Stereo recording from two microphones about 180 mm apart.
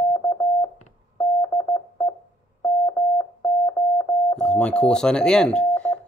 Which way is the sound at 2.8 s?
15° left (ahead or behind).